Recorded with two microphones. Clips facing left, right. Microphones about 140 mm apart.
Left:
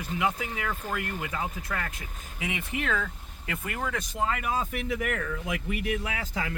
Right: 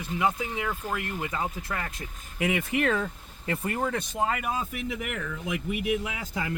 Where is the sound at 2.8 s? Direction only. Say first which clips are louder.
Right 4 dB; 40° right (ahead or behind).